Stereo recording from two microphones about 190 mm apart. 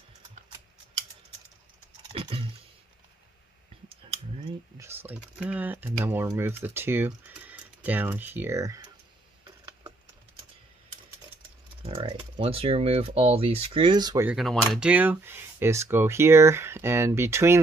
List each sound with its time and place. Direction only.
2.1 s a sound: 30° right (ahead or behind)
4.7 s speech: 10° right (ahead or behind)
11.8 s speech: 30° right (ahead or behind)
14.2 s speech: centre (ahead or behind)